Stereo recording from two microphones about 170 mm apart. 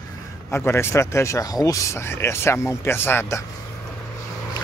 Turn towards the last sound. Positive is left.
turn(degrees=15)  # may be behind; listen again after turning